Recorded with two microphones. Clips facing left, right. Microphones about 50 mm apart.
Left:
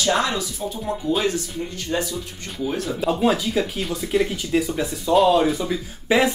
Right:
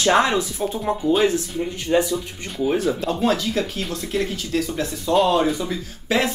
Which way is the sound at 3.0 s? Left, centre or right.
Centre.